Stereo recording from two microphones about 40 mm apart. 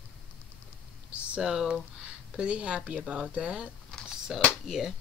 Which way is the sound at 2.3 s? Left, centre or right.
Right.